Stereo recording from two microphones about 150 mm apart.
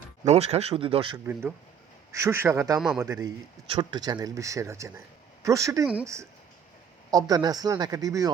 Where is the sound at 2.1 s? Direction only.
20° right (ahead or behind).